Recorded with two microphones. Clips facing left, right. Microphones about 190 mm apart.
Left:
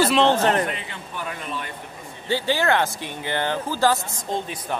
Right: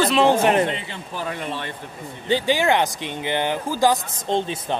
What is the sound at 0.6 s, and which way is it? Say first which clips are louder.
A man's voice: right 3 dB; 30° right (ahead or behind).